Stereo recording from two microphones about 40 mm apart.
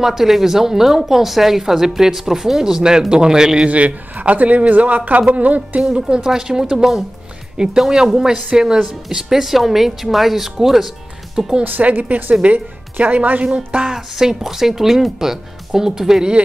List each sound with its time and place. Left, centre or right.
0.0 s speech: centre
3.6 s speech: right
5.8 s speech: right
7.5 s speech: centre
11.6 s a woman's voice: right
12.0 s speech: right
13.8 s speech: centre